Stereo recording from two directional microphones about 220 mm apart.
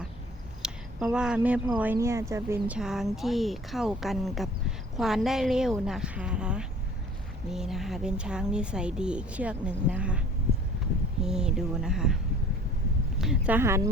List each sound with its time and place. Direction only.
0.6 s a woman's voice: centre (ahead or behind)
11.2 s a woman's voice: 5° right (ahead or behind)